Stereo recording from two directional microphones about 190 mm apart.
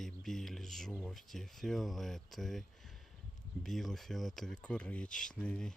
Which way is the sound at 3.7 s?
Centre (ahead or behind).